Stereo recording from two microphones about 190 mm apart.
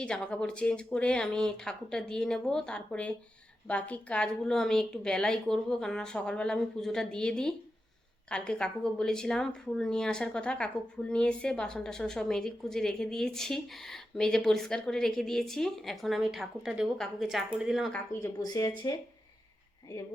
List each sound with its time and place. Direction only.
0.0 s a woman's voice: 5° left (ahead or behind)
18.1 s speech: 15° left (ahead or behind)